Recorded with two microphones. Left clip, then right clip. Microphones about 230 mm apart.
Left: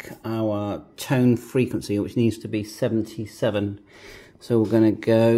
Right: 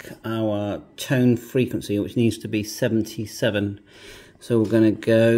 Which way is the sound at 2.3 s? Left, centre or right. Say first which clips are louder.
Right 2 dB; centre.